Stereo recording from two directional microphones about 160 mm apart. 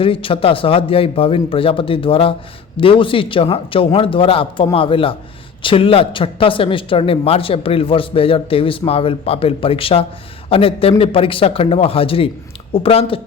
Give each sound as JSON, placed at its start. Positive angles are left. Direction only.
{"t": 0.0, "sound": "speech", "side_deg": 35}